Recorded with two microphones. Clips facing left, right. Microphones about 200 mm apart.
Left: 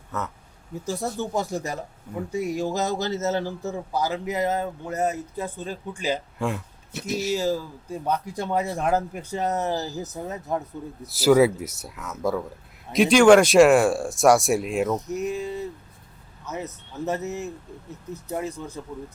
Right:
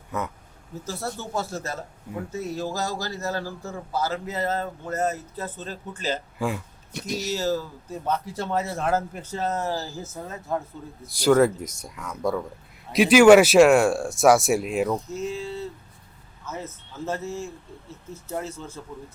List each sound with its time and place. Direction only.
0.1 s speech: 15° right (ahead or behind)
0.9 s speech: 15° left (ahead or behind)
6.4 s speech: centre (ahead or behind); by 10.6 s 20° left (ahead or behind)
11.0 s speech: 5° left (ahead or behind)
14.9 s speech: 20° left (ahead or behind)